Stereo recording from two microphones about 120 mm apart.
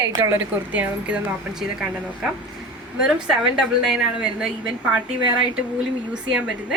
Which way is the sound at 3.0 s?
5° right (ahead or behind).